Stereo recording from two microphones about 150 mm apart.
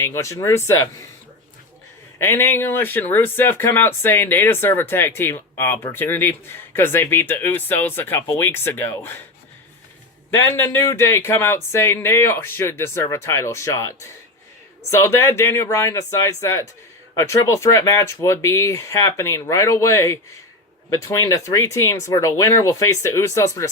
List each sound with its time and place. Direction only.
0.0 s speech: 20° left (ahead or behind)
2.1 s speech: 15° left (ahead or behind)
10.3 s speech: 20° left (ahead or behind)